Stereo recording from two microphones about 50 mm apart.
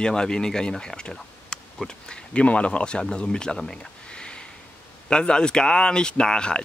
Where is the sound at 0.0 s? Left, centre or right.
Centre.